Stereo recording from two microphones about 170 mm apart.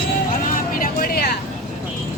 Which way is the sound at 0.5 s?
55° left (ahead or behind).